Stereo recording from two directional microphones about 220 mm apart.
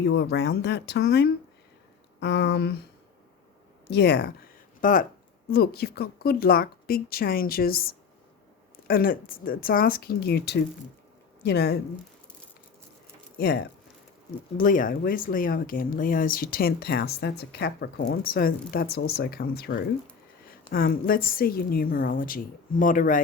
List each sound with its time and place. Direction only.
0.0 s a woman's voice: 50° left (ahead or behind)
3.8 s a woman's voice: 50° left (ahead or behind)
4.8 s a woman's voice: 35° left (ahead or behind)
14.6 s a woman's voice: 40° left (ahead or behind)
20.7 s speech: 40° left (ahead or behind)